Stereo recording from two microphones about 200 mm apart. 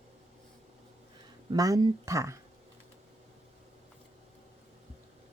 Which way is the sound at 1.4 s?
20° right (ahead or behind).